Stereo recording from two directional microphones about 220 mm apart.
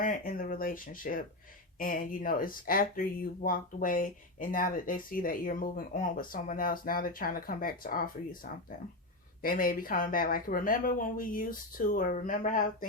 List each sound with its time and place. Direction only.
0.0 s speech: 40° left (ahead or behind)
9.4 s speech: 40° left (ahead or behind)